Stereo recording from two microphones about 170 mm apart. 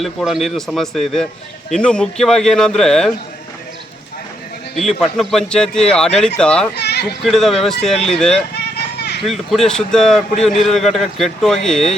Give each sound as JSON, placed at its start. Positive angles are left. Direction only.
{"t": 0.0, "sound": "speech", "side_deg": 0}
{"t": 4.8, "sound": "speech", "side_deg": 0}
{"t": 6.7, "sound": "children playing", "side_deg": 75}
{"t": 7.0, "sound": "speech", "side_deg": 0}
{"t": 8.5, "sound": "a sound", "side_deg": 75}
{"t": 9.2, "sound": "speech", "side_deg": 0}